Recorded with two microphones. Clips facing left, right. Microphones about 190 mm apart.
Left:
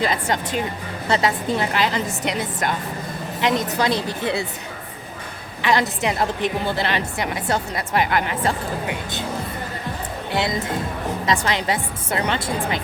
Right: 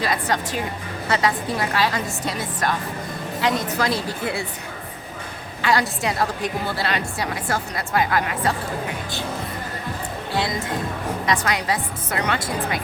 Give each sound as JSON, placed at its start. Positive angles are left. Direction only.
{"t": 0.0, "sound": "a woman's voice", "side_deg": 25}
{"t": 5.6, "sound": "a woman's voice", "side_deg": 20}
{"t": 11.3, "sound": "a woman's voice", "side_deg": 25}